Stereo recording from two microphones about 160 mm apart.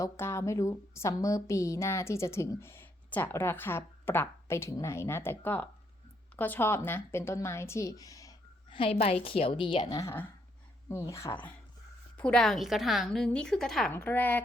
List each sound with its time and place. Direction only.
0.0 s a woman's voice: 15° left (ahead or behind)
10.0 s a woman's voice: 15° left (ahead or behind)